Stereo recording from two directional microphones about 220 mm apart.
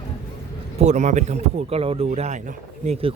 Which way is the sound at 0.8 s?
30° right (ahead or behind).